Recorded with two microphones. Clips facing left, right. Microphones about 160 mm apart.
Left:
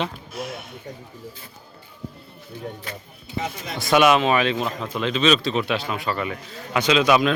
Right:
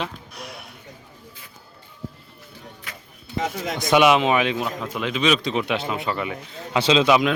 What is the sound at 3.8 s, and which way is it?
Speech, 20° right (ahead or behind).